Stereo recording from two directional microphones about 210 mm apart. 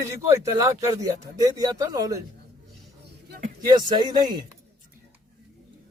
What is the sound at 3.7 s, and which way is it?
Speech, 20° right (ahead or behind).